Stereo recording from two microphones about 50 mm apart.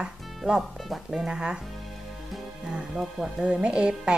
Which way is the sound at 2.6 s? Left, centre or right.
Centre.